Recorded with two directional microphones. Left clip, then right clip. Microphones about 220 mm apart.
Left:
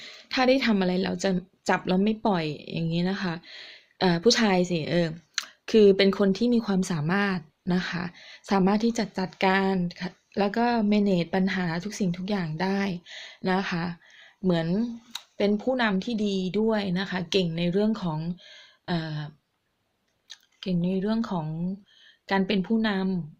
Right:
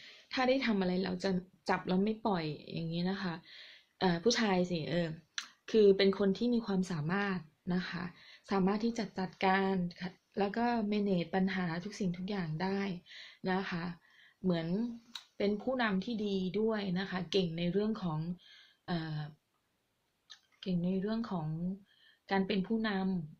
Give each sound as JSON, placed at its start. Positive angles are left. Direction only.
{"t": 0.0, "sound": "a woman's voice", "side_deg": 45}
{"t": 20.3, "sound": "a woman's voice", "side_deg": 50}